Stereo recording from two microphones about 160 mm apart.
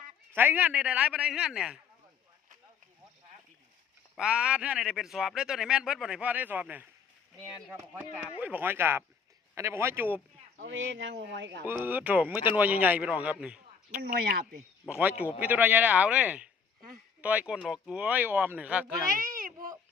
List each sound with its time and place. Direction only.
0.3 s speech: 10° right (ahead or behind)
4.2 s a man's voice: 5° right (ahead or behind)
8.4 s speech: 10° right (ahead or behind)
11.1 s speech: 90° right
11.6 s speech: 10° right (ahead or behind)
13.4 s a sound: 5° right (ahead or behind)
14.0 s speech: 65° right (ahead or behind)
14.8 s speech: 10° right (ahead or behind)